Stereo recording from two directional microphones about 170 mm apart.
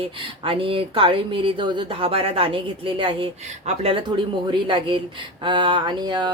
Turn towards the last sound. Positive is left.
turn(degrees=-25)  # may be behind; listen again after turning